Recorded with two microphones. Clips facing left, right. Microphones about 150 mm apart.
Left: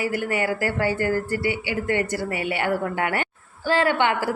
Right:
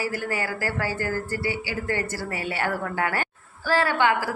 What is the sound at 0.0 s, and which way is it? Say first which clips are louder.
A woman's voice: left 4 dB; 20° left (ahead or behind).